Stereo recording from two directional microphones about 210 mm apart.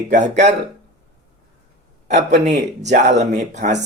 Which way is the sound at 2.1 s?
35° right (ahead or behind).